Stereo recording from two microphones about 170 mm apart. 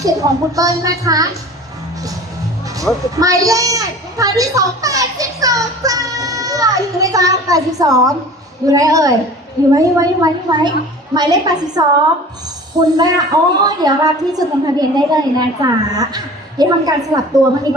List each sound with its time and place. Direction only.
0.0 s a woman's voice: 20° right (ahead or behind)
3.2 s a sound: 20° right (ahead or behind)
8.6 s a woman's voice: 20° right (ahead or behind)
13.0 s a woman's voice: 20° right (ahead or behind)